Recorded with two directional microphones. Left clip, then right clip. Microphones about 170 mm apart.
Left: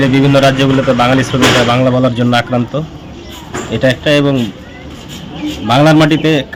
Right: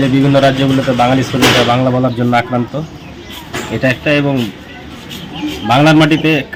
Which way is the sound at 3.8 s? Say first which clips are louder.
Left 2 dB; 20° left (ahead or behind).